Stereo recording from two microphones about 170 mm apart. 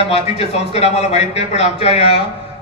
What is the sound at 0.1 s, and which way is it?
A man's voice, 40° left (ahead or behind).